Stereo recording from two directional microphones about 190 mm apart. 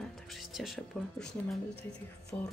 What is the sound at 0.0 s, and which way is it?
Speech, centre (ahead or behind).